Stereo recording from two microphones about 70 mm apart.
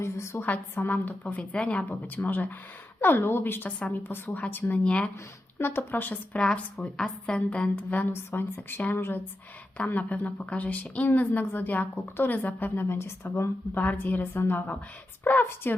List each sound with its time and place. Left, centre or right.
0.0 s a woman's voice: left
0.4 s a woman's voice: left
1.9 s a woman's voice: left
3.8 s a woman's voice: centre
4.4 s a woman's voice: left
4.8 s a woman's voice: centre
5.5 s a woman's voice: left
6.4 s a woman's voice: centre
8.1 s a woman's voice: left
9.7 s a woman's voice: left